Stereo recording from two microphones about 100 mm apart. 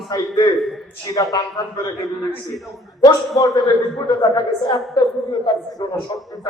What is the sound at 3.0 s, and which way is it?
A man's voice, 35° left (ahead or behind).